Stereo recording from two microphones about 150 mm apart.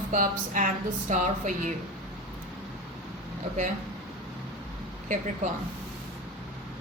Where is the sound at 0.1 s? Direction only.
60° right (ahead or behind).